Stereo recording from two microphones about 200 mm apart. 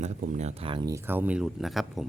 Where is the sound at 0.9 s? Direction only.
10° right (ahead or behind).